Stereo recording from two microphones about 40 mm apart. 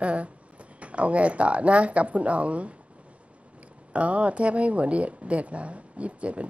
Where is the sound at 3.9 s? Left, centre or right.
Right.